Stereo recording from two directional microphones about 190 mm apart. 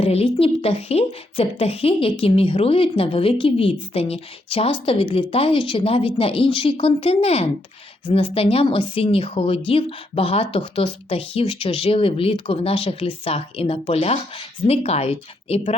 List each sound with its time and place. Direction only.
0.0 s speech: 30° left (ahead or behind)